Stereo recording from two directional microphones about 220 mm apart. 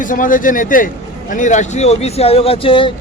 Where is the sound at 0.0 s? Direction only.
35° left (ahead or behind).